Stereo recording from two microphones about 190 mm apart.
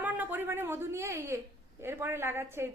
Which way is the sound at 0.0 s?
10° right (ahead or behind).